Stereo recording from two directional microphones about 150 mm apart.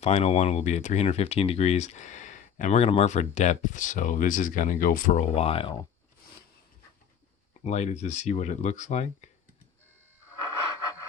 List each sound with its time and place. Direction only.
0.0 s speech: 45° left (ahead or behind)
7.6 s speech: 50° left (ahead or behind)